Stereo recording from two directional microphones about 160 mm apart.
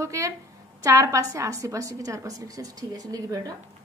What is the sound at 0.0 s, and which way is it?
A woman's voice, 20° right (ahead or behind).